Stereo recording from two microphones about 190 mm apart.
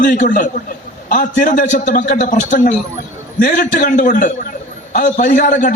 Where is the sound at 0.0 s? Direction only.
45° left (ahead or behind).